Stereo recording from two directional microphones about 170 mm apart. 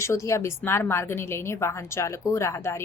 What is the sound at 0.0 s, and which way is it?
A woman's voice, 15° left (ahead or behind).